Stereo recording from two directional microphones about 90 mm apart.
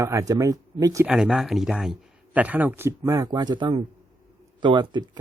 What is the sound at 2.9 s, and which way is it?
Speech, 35° right (ahead or behind).